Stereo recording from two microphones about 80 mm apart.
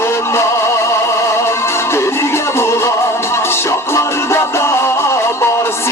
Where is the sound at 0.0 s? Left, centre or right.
Left.